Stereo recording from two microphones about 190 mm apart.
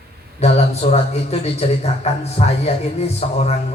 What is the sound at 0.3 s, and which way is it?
A man's voice, 35° left (ahead or behind).